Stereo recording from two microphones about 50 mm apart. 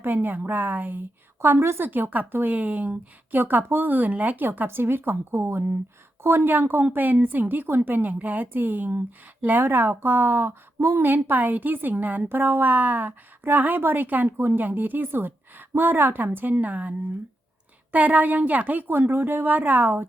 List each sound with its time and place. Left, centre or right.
0.0 s a woman's voice: right
1.4 s a woman's voice: right
1.8 s a woman's voice: right
3.4 s a woman's voice: right
6.5 s a woman's voice: right
11.0 s a woman's voice: right
14.5 s a woman's voice: right
17.9 s a woman's voice: right
18.9 s a woman's voice: right